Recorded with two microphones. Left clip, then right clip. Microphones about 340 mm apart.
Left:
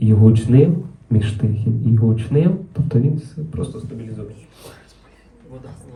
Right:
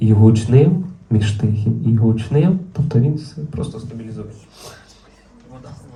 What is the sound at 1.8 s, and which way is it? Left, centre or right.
Speech, right.